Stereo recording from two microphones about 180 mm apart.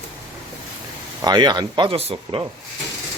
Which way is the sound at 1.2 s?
25° right (ahead or behind).